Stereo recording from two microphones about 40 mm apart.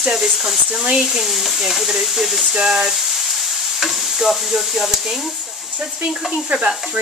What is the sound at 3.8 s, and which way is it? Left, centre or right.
Stir, centre.